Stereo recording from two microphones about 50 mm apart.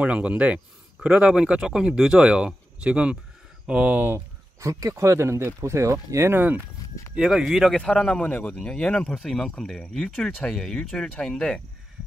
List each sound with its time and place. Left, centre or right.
0.0 s speech: right
4.6 s speech: right
6.3 s speech: right
7.2 s speech: centre
8.0 s speech: centre
9.1 s speech: centre